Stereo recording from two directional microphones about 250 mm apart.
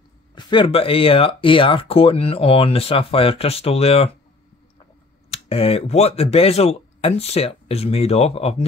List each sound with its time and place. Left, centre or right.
0.3 s speech: centre
5.3 s speech: left